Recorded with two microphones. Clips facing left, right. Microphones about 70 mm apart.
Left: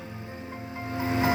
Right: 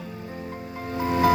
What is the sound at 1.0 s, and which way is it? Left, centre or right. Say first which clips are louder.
Music: right 5 dB; left.